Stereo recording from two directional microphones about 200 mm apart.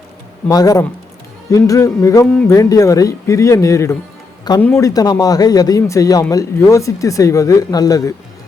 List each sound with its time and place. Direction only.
0.4 s speech: 15° left (ahead or behind)
2.6 s a man's voice: 15° left (ahead or behind)